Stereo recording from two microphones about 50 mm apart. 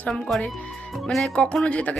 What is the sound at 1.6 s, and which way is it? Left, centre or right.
Speech, left.